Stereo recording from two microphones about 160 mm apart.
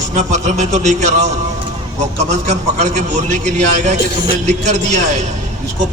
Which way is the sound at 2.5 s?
45° right (ahead or behind).